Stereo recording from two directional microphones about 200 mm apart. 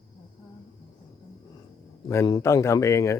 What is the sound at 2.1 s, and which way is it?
Speech, 15° left (ahead or behind).